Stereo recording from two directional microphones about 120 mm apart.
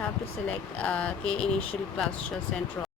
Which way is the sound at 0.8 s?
10° left (ahead or behind).